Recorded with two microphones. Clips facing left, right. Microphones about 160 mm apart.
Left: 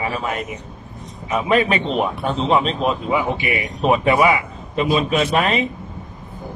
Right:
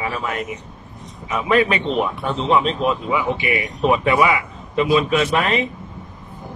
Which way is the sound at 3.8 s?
30° left (ahead or behind).